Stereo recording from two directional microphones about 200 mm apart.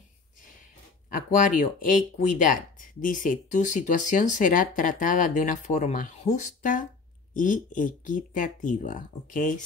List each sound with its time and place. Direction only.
1.1 s speech: 40° left (ahead or behind)